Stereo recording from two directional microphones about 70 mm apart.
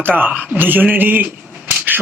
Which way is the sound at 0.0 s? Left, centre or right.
Right.